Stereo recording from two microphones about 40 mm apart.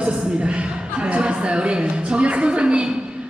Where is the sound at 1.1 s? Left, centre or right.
Right.